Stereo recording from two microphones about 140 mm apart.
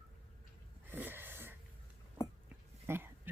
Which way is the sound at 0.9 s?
15° right (ahead or behind).